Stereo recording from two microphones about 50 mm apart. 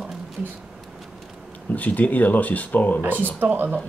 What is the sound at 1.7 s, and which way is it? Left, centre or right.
Speech, left.